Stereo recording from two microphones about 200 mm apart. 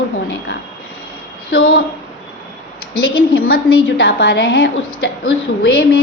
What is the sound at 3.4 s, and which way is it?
A woman's voice, 50° left (ahead or behind).